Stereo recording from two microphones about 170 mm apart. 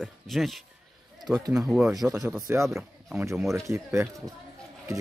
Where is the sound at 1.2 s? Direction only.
20° right (ahead or behind).